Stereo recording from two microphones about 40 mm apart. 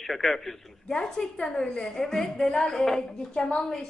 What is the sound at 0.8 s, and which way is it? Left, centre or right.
A woman's voice, centre.